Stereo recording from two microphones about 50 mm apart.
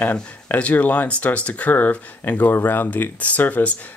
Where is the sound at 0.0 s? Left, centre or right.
Left.